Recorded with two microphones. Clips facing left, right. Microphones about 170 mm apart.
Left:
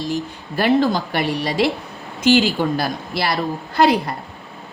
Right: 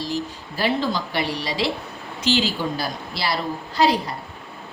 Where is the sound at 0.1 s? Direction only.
55° left (ahead or behind).